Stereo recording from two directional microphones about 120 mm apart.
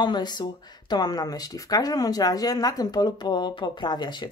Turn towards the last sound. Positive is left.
turn(degrees=40)  # may be behind; listen again after turning